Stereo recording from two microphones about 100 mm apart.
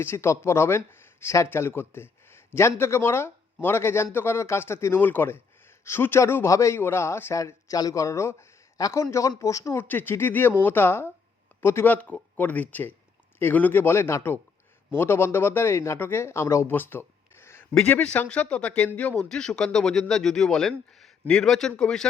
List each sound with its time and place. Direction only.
0.0 s speech: 25° left (ahead or behind)
9.7 s speech: 20° left (ahead or behind)